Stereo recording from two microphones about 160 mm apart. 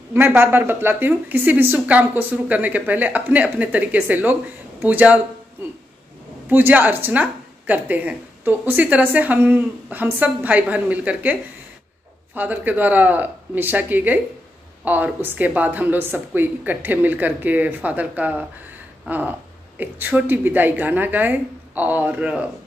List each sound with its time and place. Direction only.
0.4 s a woman's voice: 15° right (ahead or behind)
6.5 s a woman's voice: 10° right (ahead or behind)
12.4 s a woman's voice: 10° right (ahead or behind)